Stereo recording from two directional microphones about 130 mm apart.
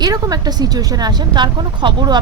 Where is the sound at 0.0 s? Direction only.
30° right (ahead or behind).